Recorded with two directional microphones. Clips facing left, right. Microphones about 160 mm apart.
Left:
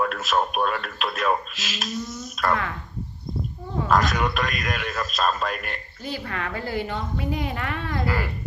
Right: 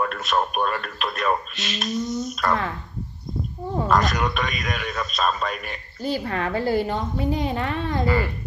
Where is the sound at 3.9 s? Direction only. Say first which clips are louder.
Even; centre (ahead or behind).